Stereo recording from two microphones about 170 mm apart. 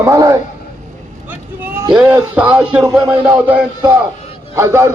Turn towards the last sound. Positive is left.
turn(degrees=-15)  # may be behind; listen again after turning